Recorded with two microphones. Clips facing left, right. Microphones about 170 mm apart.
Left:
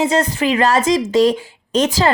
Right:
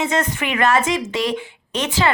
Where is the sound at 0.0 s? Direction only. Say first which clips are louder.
Left 5 dB; 35° left (ahead or behind).